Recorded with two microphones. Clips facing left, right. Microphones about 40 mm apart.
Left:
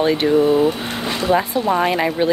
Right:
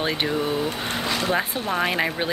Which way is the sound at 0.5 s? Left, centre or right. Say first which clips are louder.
Left 8 dB; left.